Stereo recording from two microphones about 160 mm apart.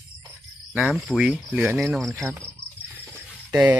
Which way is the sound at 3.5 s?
10° right (ahead or behind).